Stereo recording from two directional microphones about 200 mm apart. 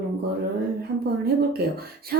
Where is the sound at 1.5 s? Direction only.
50° right (ahead or behind).